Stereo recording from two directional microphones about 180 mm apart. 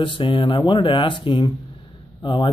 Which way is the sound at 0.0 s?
25° left (ahead or behind).